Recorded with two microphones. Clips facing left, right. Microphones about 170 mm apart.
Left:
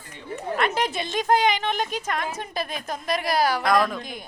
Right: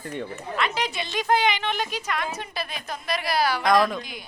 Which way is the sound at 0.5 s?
50° left (ahead or behind).